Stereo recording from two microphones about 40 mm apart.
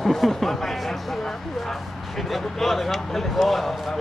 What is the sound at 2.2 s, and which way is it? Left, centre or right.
Speech, centre.